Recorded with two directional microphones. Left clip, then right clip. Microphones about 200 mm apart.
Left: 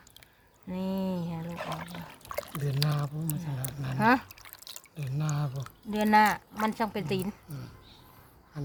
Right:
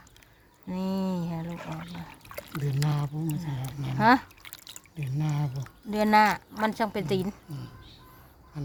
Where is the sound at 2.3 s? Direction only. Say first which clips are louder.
Left 1 dB; 5° right (ahead or behind).